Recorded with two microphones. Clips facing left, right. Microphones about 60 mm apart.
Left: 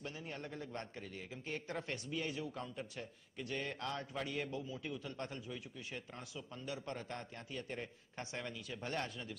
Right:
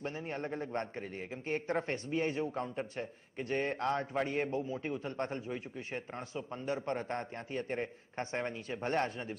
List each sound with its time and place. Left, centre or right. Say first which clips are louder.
0.0 s a man's voice: right 8 dB; right